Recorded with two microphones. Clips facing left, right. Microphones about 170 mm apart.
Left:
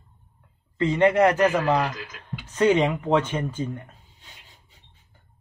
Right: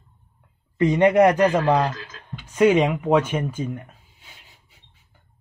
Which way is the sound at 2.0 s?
15° left (ahead or behind).